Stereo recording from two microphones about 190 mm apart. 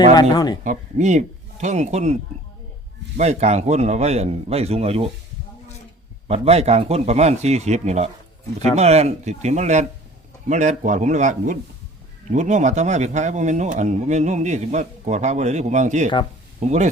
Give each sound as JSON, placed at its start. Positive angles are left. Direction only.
{"t": 0.1, "sound": "speech", "side_deg": 20}
{"t": 0.6, "sound": "speech", "side_deg": -40}
{"t": 3.2, "sound": "speech", "side_deg": -35}
{"t": 6.2, "sound": "speech", "side_deg": -30}